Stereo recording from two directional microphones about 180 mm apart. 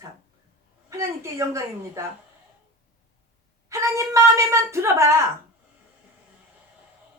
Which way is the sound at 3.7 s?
15° right (ahead or behind).